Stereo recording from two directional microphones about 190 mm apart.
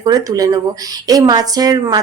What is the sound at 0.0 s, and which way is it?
A woman's voice, 20° right (ahead or behind).